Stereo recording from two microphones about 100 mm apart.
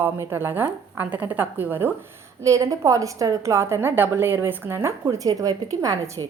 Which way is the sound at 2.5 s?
30° right (ahead or behind).